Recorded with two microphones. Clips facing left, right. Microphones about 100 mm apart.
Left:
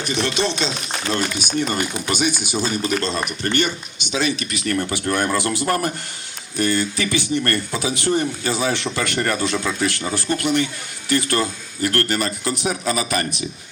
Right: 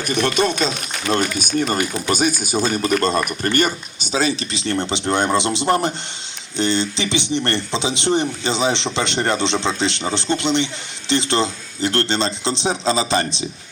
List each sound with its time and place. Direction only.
0.0 s speech: 50° right (ahead or behind); by 13.2 s 25° right (ahead or behind)